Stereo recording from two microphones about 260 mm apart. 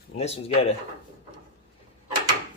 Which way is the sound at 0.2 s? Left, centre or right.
Left.